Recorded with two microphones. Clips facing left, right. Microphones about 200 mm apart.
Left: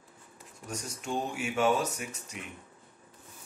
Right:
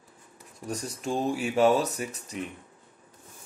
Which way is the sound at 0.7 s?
35° right (ahead or behind).